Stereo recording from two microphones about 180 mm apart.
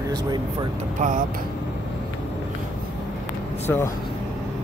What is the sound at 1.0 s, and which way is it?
Speech, 45° right (ahead or behind).